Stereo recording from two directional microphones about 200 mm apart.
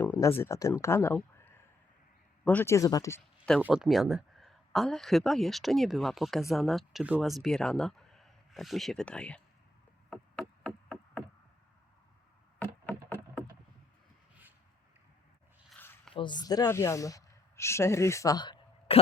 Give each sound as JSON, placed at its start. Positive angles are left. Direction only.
{"t": 0.0, "sound": "a sound", "side_deg": 10}
{"t": 0.3, "sound": "speech", "side_deg": 15}
{"t": 3.6, "sound": "speech", "side_deg": 0}
{"t": 10.1, "sound": "chop", "side_deg": 5}
{"t": 12.5, "sound": "music", "side_deg": 10}
{"t": 16.1, "sound": "speech", "side_deg": 20}